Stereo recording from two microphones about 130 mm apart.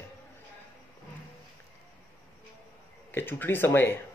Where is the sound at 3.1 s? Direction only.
15° left (ahead or behind).